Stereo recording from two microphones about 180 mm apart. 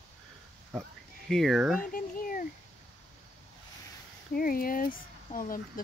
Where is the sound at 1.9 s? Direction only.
50° left (ahead or behind).